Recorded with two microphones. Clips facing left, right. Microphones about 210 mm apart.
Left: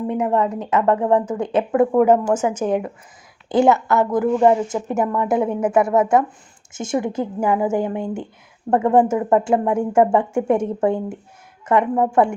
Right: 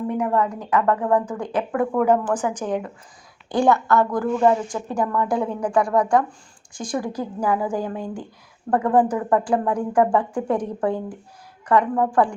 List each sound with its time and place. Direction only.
0.1 s a woman's voice: 20° left (ahead or behind)